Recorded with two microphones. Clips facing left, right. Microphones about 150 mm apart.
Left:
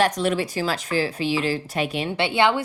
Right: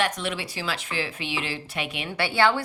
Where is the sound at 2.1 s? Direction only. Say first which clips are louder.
Left 1 dB; 20° left (ahead or behind).